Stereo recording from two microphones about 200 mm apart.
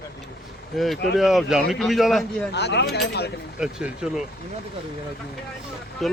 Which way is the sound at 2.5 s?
55° left (ahead or behind).